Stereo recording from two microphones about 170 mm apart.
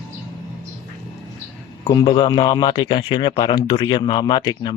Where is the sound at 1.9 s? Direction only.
25° left (ahead or behind).